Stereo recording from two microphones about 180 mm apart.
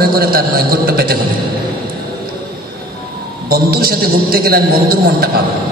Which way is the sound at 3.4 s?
60° right (ahead or behind).